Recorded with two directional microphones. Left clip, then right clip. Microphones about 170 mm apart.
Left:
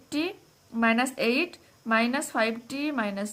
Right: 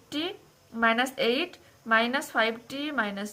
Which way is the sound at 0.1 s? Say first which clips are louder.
Left 2 dB; 30° left (ahead or behind).